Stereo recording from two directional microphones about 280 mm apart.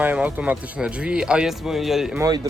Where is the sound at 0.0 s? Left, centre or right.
Centre.